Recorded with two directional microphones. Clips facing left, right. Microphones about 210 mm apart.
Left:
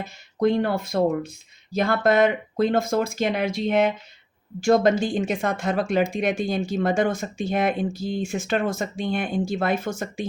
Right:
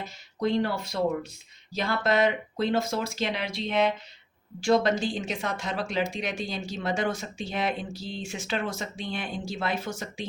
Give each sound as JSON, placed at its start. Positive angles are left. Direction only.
{"t": 0.3, "sound": "speech", "side_deg": 50}